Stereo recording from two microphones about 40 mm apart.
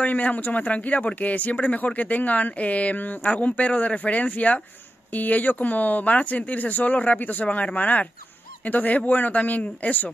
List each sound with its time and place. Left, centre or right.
0.0 s speech: left